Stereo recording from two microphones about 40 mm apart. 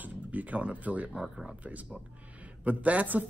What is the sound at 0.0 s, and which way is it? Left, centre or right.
Speech, right.